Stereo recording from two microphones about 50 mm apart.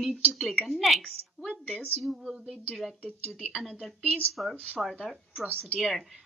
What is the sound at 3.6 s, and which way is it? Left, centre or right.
A woman's voice, centre.